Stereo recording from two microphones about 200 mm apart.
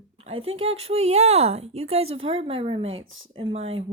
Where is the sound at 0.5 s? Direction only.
30° right (ahead or behind).